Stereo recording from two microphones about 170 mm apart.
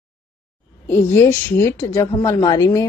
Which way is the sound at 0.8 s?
15° left (ahead or behind).